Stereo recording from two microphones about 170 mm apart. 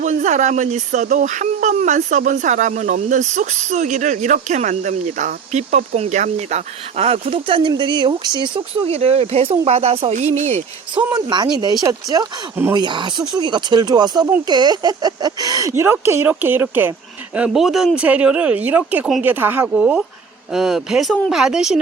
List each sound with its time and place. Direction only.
0.0 s speech: 45° right (ahead or behind); by 8.6 s 25° right (ahead or behind)
8.9 s speech: 35° right (ahead or behind)
10.9 s speech: 25° right (ahead or behind); by 21.7 s 5° right (ahead or behind)